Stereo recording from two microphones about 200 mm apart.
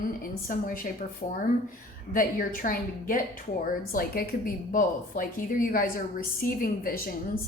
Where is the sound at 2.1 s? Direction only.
45° left (ahead or behind).